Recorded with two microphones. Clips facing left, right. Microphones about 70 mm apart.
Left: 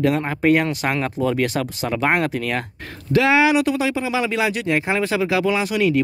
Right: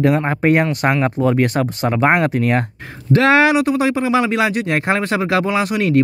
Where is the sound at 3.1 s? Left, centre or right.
Right.